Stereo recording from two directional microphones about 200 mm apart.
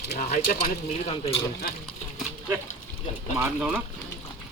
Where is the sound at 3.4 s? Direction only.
5° right (ahead or behind).